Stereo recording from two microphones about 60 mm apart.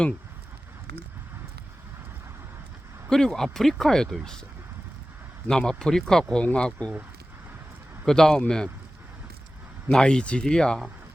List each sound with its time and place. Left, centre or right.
3.1 s speech: centre
5.5 s speech: centre
8.0 s speech: centre
9.9 s speech: centre